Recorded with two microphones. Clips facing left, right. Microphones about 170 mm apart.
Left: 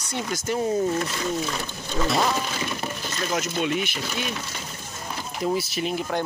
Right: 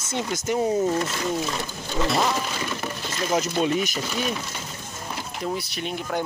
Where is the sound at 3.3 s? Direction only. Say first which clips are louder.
Right 3 dB; 35° right (ahead or behind).